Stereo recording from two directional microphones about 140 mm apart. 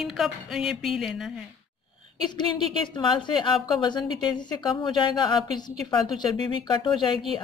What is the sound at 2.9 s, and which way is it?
A woman's voice, 35° left (ahead or behind).